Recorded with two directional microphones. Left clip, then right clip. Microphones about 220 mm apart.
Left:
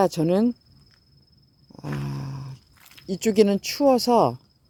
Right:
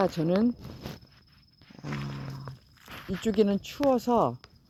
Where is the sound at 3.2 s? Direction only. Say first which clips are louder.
Left 7 dB; 25° left (ahead or behind).